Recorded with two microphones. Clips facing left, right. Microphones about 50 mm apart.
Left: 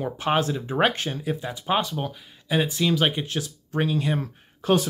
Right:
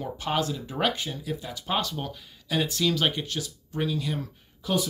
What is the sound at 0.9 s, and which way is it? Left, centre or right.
Speech, left.